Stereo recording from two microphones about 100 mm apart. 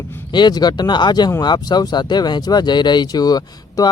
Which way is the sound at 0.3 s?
45° left (ahead or behind).